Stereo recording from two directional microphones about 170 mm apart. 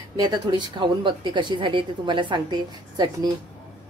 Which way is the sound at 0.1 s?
25° right (ahead or behind).